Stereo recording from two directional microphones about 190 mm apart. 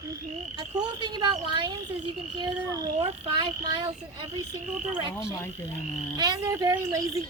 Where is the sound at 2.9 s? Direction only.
35° right (ahead or behind).